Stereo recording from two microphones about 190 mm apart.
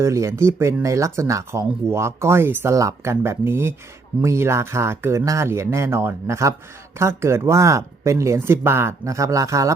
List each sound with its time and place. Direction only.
0.0 s speech: 15° right (ahead or behind)